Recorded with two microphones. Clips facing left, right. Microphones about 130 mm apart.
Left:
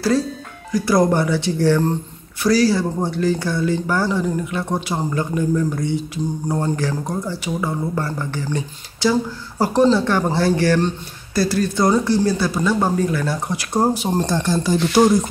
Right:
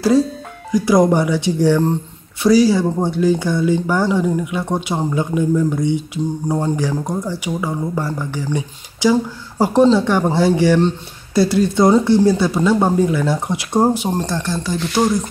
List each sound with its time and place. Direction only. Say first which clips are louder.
0.7 s speech: right 3 dB; 15° right (ahead or behind)
14.3 s speech: left 3 dB; 5° left (ahead or behind)